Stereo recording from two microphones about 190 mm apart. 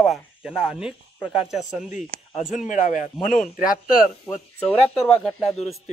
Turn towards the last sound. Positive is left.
turn(degrees=0)  # may be behind; listen again after turning